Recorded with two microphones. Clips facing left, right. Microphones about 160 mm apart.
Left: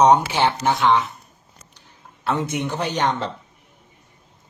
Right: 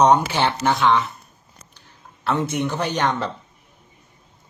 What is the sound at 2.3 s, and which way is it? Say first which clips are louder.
Speech: right 1 dB; 15° left (ahead or behind).